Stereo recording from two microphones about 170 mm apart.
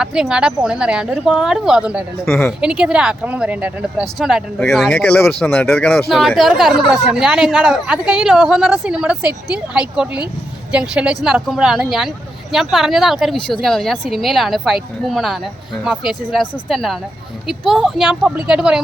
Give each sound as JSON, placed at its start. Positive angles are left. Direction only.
{"t": 0.0, "sound": "speech", "side_deg": -5}
{"t": 2.2, "sound": "speech", "side_deg": 15}
{"t": 2.6, "sound": "speech", "side_deg": -5}
{"t": 4.9, "sound": "speech", "side_deg": 10}